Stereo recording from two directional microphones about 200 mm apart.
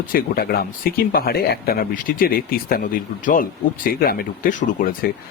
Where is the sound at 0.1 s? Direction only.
50° left (ahead or behind).